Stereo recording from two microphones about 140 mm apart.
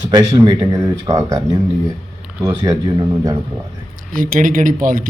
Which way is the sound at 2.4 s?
25° right (ahead or behind).